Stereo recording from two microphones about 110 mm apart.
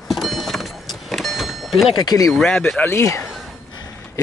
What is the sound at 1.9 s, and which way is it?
Speech, 35° left (ahead or behind).